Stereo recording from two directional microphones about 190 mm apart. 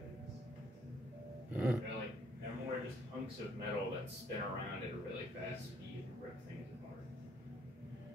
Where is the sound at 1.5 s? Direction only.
5° right (ahead or behind).